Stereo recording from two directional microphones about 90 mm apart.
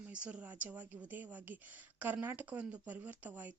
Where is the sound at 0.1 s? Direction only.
15° right (ahead or behind).